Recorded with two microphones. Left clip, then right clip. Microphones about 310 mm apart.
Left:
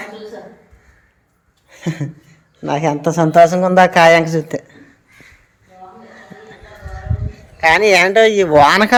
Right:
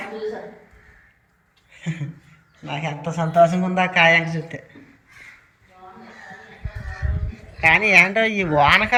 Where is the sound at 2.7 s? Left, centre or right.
Left.